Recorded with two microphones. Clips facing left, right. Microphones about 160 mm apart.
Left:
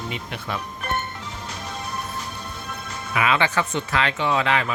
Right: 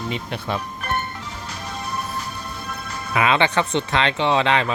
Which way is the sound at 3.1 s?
30° right (ahead or behind).